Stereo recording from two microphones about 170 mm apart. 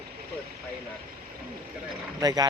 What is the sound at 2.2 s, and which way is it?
Speech, 20° right (ahead or behind).